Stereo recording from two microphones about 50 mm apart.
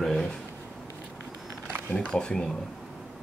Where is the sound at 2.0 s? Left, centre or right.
Centre.